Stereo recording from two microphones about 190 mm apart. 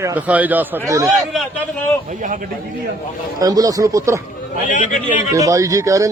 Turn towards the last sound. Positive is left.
turn(degrees=-15)  # may be behind; listen again after turning